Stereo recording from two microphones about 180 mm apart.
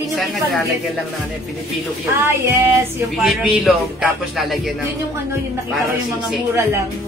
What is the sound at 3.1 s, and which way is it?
Speech, centre (ahead or behind).